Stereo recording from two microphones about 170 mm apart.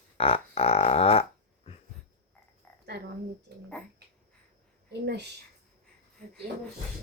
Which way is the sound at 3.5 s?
75° right (ahead or behind).